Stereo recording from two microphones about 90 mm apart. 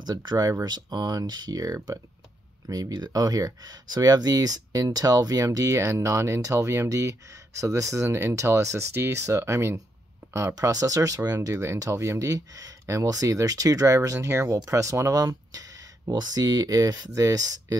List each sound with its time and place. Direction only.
0.0 s speech: 50° right (ahead or behind)